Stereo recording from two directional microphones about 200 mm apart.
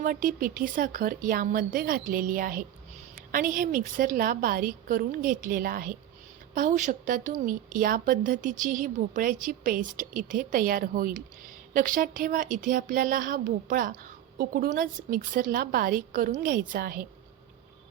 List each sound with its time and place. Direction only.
0.0 s a woman's voice: 40° right (ahead or behind)